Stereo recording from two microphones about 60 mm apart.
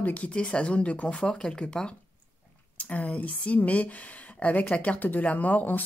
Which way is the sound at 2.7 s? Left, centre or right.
Left.